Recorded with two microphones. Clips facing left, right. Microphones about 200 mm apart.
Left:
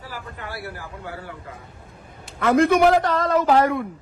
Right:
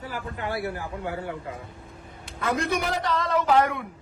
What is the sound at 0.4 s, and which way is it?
Speech, 20° right (ahead or behind).